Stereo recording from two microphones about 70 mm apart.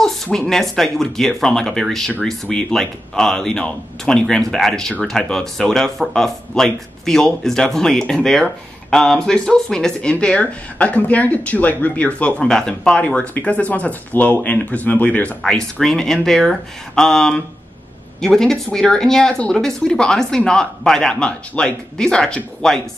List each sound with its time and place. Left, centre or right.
0.0 s speech: centre
15.5 s speech: centre